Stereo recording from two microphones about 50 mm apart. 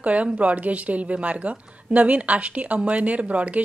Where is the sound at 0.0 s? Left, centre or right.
Right.